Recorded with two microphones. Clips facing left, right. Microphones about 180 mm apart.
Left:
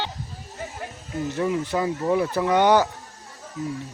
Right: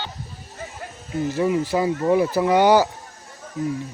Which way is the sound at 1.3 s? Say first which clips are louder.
Right 3 dB; 5° right (ahead or behind).